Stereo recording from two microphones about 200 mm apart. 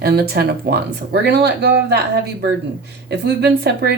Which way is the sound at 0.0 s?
50° right (ahead or behind).